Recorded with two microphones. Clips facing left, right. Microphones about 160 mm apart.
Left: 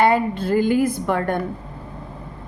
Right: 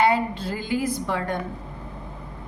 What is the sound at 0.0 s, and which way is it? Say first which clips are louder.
A woman's voice: left 3 dB; 55° left (ahead or behind).